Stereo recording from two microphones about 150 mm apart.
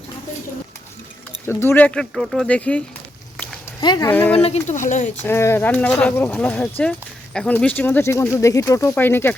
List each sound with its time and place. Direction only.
1.5 s speech: 15° left (ahead or behind)
3.8 s speech: 25° left (ahead or behind)
4.1 s speech: 10° left (ahead or behind)
4.4 s speech: 45° left (ahead or behind)
5.2 s speech: 15° left (ahead or behind)